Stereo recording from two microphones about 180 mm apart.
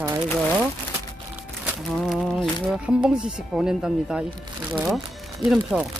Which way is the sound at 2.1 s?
Centre (ahead or behind).